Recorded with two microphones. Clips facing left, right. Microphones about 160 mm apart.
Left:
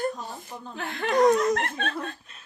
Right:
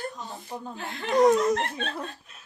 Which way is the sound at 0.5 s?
15° right (ahead or behind).